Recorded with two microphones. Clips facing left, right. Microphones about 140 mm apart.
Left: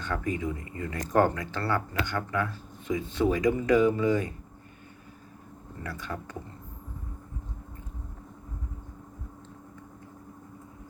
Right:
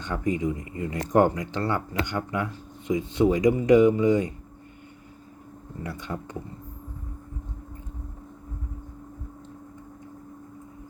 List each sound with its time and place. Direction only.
0.0 s speech: 20° right (ahead or behind)
5.8 s speech: 20° right (ahead or behind)